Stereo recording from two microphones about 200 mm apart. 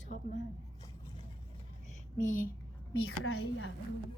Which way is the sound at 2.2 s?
40° left (ahead or behind).